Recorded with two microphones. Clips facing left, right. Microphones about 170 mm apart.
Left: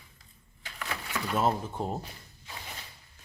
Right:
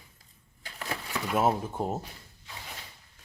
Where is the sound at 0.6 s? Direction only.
35° right (ahead or behind).